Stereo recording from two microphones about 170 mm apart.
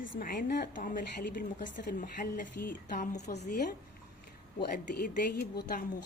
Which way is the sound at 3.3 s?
80° left.